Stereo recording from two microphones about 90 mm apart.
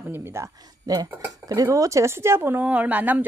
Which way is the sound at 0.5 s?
45° right (ahead or behind).